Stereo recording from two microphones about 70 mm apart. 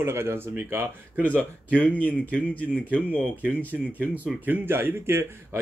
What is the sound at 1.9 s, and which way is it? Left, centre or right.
Speech, left.